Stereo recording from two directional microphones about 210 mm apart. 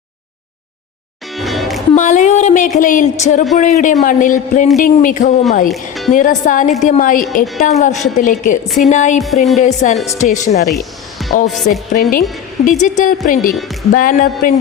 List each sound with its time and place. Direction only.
1.4 s music: centre (ahead or behind)
2.0 s speech: 35° left (ahead or behind)
5.6 s speech: centre (ahead or behind)
6.1 s speech: 40° left (ahead or behind)
7.4 s speech: centre (ahead or behind)
8.1 s speech: 40° left (ahead or behind)
8.6 s speech: centre (ahead or behind)
8.9 s speech: 35° left (ahead or behind)
9.2 s speech: centre (ahead or behind)
9.6 s speech: 35° left (ahead or behind)
10.7 s music: centre (ahead or behind)
11.4 s speech: centre (ahead or behind)
12.6 s speech: 35° left (ahead or behind)